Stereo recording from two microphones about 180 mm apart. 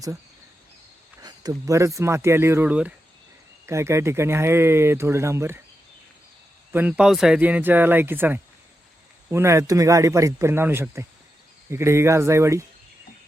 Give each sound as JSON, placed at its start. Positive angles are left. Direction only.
{"t": 1.2, "sound": "speech", "side_deg": -20}
{"t": 6.7, "sound": "speech", "side_deg": -5}